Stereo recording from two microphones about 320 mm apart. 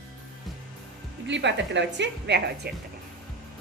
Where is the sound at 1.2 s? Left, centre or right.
Right.